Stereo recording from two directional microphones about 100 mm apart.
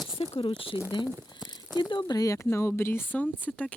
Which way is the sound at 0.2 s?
60° left (ahead or behind).